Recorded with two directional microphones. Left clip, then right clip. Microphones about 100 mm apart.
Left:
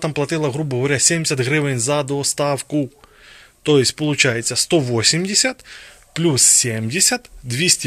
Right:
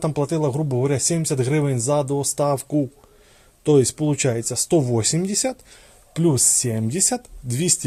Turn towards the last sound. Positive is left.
turn(degrees=-30)  # may be behind; listen again after turning